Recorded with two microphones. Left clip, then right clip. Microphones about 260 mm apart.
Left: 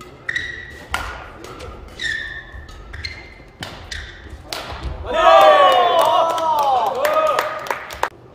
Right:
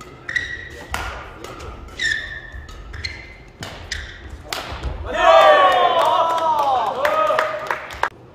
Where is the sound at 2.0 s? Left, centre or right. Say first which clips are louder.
Right 3 dB; centre.